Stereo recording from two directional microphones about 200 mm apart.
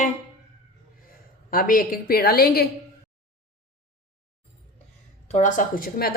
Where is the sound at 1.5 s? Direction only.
45° left (ahead or behind).